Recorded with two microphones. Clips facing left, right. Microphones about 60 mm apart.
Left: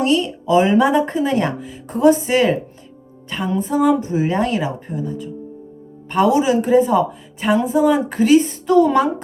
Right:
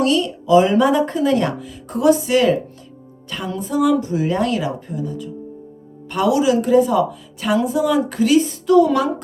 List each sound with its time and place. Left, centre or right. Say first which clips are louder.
0.0 s speech: even; left
7.4 s speech: left 2 dB; left
8.1 s speech: left 2 dB; left